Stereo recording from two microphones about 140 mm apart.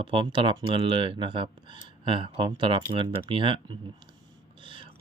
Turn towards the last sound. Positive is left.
turn(degrees=-40)  # may be behind; listen again after turning